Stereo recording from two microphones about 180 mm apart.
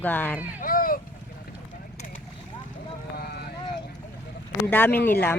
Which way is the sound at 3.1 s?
65° left (ahead or behind).